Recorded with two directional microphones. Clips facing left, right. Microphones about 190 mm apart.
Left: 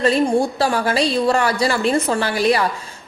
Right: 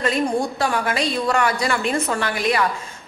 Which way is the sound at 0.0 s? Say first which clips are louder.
Left 5 dB; 30° left (ahead or behind).